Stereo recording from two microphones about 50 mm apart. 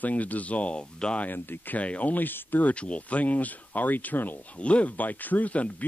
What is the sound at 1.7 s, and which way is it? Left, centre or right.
Speech, left.